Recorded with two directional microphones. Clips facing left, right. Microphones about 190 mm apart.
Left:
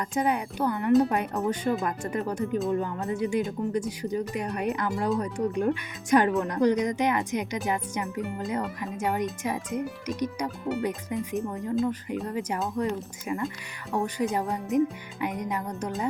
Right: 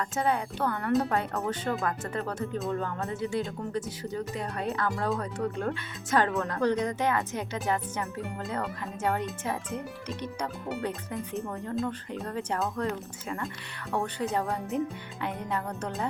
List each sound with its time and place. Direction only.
0.2 s speech: 15° left (ahead or behind)